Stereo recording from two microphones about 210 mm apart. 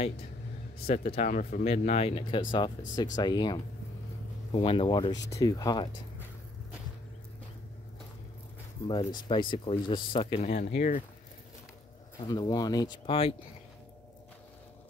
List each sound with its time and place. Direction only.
0.8 s speech: 30° left (ahead or behind)
8.8 s speech: 20° left (ahead or behind)
12.2 s speech: 20° left (ahead or behind)